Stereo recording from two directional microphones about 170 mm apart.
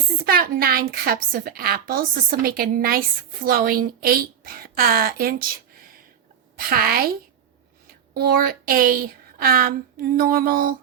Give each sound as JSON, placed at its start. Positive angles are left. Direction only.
{"t": 0.3, "sound": "a woman's voice", "side_deg": -60}